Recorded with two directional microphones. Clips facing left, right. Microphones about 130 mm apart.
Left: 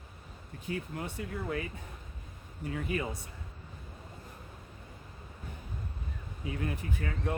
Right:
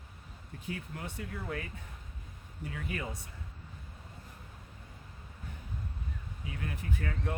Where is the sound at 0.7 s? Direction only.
30° left (ahead or behind).